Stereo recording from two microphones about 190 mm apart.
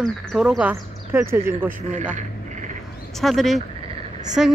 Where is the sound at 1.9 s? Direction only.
40° right (ahead or behind).